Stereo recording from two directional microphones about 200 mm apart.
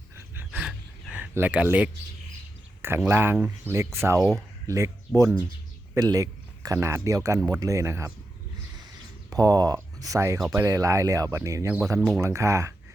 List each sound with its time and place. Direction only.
0.3 s a sound: 5° right (ahead or behind)
2.8 s speech: 10° right (ahead or behind)
9.3 s speech: 20° right (ahead or behind)
12.2 s speech: 15° right (ahead or behind)